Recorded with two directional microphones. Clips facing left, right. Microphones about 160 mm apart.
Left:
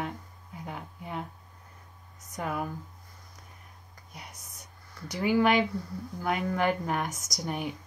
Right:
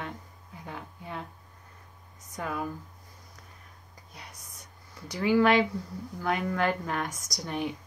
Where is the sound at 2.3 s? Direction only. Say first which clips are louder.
Left 1 dB; 15° left (ahead or behind).